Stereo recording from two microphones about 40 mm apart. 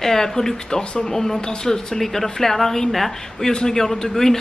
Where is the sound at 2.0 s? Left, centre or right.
Centre.